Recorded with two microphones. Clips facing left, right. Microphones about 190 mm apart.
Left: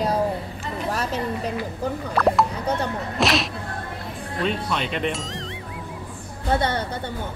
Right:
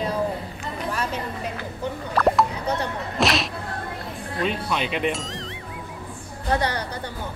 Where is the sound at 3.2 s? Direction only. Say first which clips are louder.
Left 1 dB; centre (ahead or behind).